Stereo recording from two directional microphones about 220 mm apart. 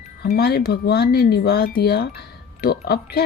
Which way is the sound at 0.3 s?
45° left (ahead or behind).